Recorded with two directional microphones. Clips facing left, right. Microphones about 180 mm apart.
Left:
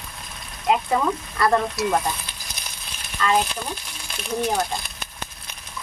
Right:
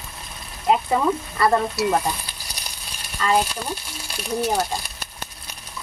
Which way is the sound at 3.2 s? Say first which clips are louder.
Right 1 dB; 10° right (ahead or behind).